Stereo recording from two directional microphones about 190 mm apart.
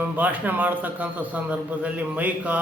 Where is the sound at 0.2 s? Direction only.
10° right (ahead or behind).